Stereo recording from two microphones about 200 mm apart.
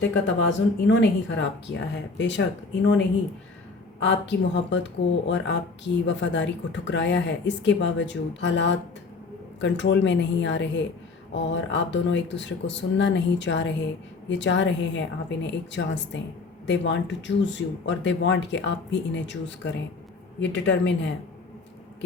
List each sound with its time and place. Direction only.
0.0 s speech: 65° left (ahead or behind)
4.0 s speech: 60° left (ahead or behind)